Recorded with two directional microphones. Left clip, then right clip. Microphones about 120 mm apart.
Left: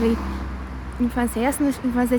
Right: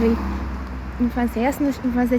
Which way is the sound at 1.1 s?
40° left (ahead or behind).